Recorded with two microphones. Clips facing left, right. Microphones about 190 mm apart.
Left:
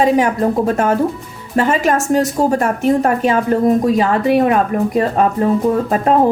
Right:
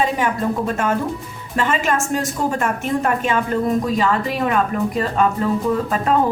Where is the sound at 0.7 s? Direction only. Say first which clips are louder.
Left 6 dB; 45° left (ahead or behind).